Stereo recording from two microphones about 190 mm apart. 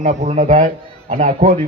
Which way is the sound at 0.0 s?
40° right (ahead or behind).